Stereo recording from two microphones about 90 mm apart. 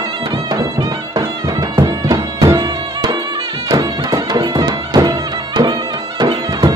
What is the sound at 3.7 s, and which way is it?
Music, 45° right (ahead or behind).